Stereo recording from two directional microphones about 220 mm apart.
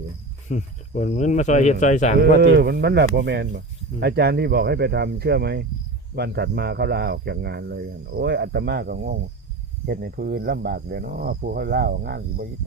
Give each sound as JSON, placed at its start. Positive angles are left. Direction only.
{"t": 0.4, "sound": "speech", "side_deg": 35}
{"t": 2.4, "sound": "speech", "side_deg": -50}